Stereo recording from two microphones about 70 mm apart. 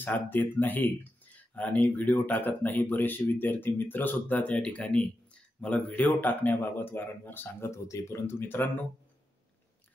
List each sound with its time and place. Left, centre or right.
0.0 s speech: left